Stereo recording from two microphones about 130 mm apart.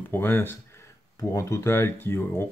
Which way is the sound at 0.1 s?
15° left (ahead or behind).